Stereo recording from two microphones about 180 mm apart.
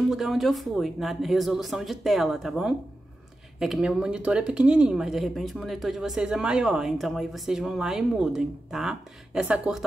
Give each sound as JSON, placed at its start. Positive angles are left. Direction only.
{"t": 0.1, "sound": "speech", "side_deg": 0}